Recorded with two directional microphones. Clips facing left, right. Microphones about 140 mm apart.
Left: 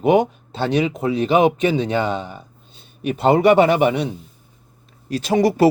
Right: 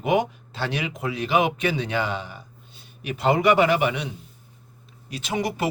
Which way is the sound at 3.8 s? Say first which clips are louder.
Left 7 dB; 45° left (ahead or behind).